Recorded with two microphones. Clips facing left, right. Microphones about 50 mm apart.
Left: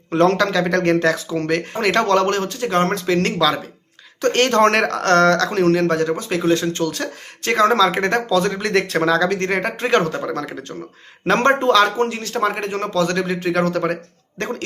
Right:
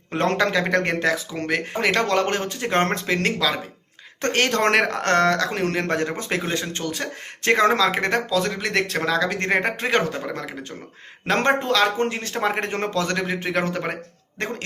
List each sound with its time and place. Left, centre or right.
0.1 s speech: right
2.2 s speech: right
3.2 s speech: centre
5.7 s speech: right
7.7 s speech: centre
9.4 s speech: centre
9.8 s speech: centre
11.3 s speech: centre
11.9 s speech: right
12.3 s speech: centre
12.5 s speech: right
13.1 s speech: centre